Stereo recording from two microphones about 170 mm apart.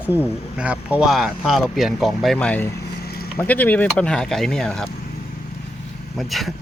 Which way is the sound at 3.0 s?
65° left (ahead or behind).